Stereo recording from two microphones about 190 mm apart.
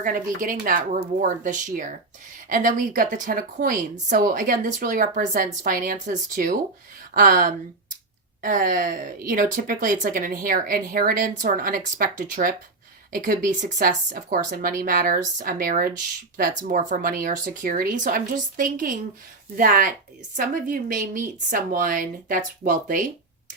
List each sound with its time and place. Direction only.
0.0 s speech: 45° right (ahead or behind)